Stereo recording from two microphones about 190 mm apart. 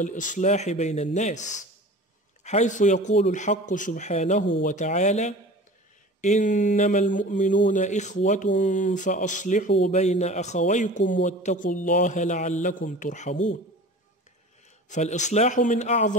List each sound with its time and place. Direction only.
0.0 s speech: 40° left (ahead or behind)
2.4 s speech: 40° left (ahead or behind)
14.9 s speech: 40° left (ahead or behind)